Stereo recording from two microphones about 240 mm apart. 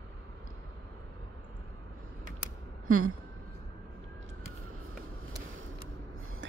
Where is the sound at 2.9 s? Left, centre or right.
Right.